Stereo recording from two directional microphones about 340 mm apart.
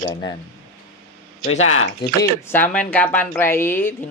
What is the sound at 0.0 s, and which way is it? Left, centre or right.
Speech, centre.